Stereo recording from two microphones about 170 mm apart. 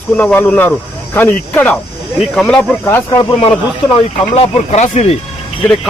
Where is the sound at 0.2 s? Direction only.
10° left (ahead or behind).